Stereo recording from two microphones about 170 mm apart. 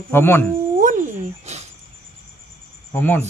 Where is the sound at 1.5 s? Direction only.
40° right (ahead or behind).